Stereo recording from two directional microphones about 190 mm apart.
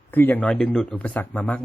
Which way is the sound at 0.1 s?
10° left (ahead or behind).